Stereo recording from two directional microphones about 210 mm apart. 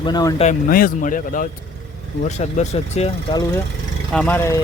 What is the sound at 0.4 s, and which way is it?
Speech, 40° left (ahead or behind).